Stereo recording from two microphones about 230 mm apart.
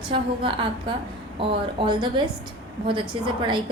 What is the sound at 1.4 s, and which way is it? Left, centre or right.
Speech, right.